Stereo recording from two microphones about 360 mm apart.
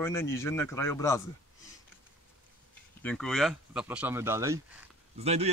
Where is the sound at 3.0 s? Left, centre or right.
Centre.